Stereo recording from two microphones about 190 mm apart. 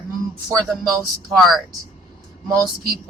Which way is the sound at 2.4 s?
20° right (ahead or behind).